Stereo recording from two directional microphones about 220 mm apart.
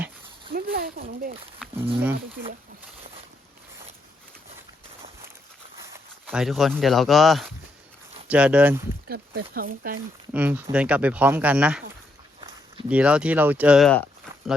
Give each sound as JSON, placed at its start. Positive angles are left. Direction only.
{"t": 0.5, "sound": "speech", "side_deg": -40}
{"t": 6.2, "sound": "speech", "side_deg": -5}
{"t": 9.0, "sound": "a sound", "side_deg": -45}
{"t": 9.6, "sound": "speech", "side_deg": -40}
{"t": 10.3, "sound": "speech", "side_deg": -10}
{"t": 12.9, "sound": "speech", "side_deg": -5}